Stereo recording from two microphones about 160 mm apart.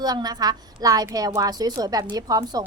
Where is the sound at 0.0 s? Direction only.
25° right (ahead or behind).